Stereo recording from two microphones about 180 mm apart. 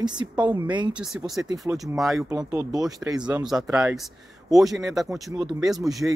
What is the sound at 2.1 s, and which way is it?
Speech, 15° right (ahead or behind).